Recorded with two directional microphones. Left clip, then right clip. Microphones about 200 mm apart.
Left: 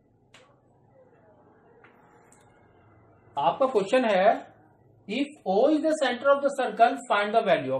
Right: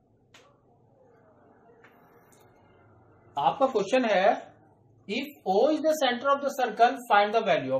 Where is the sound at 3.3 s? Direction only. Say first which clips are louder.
Left 1 dB; 20° left (ahead or behind).